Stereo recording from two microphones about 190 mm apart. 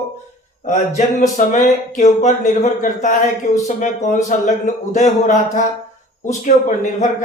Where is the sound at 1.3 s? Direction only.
40° left (ahead or behind).